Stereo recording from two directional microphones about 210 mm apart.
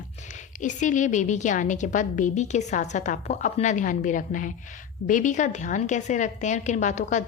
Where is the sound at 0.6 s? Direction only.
35° left (ahead or behind).